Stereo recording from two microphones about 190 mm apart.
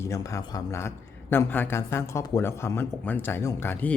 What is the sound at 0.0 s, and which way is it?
Speech, 15° left (ahead or behind).